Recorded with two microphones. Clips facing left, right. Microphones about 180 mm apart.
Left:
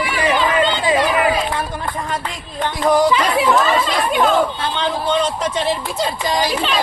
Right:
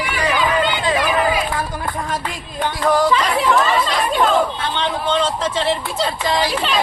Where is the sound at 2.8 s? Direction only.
20° left (ahead or behind).